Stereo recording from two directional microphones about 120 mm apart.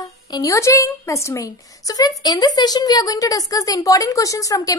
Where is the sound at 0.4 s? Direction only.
25° left (ahead or behind).